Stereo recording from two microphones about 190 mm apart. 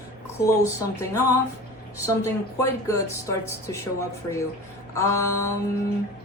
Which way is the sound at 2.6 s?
15° left (ahead or behind).